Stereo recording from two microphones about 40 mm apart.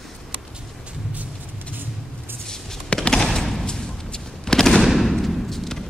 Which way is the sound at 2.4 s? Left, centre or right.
Centre.